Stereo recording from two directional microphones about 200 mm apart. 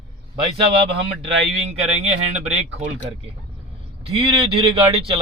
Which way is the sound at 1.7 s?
35° right (ahead or behind).